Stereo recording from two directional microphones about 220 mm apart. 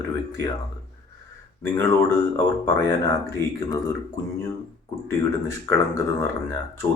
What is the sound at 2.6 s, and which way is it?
Speech, 15° left (ahead or behind).